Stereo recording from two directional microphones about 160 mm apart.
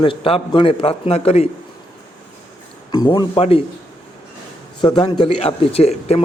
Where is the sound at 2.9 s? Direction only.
30° left (ahead or behind).